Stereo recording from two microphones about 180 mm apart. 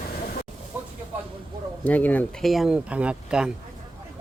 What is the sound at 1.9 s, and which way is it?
Speech, 10° left (ahead or behind).